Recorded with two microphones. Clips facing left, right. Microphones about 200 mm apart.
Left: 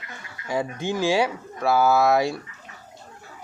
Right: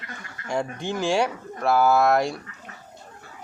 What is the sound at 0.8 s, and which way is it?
A man's voice, centre (ahead or behind).